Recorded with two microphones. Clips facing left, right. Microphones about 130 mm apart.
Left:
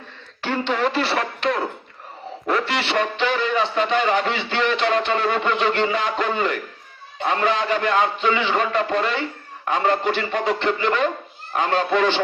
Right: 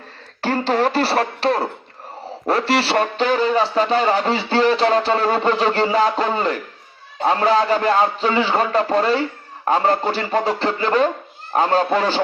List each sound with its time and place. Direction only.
0.4 s speech: 40° right (ahead or behind)